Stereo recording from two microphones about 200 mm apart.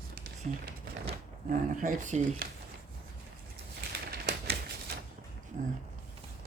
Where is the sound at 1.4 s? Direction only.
40° right (ahead or behind).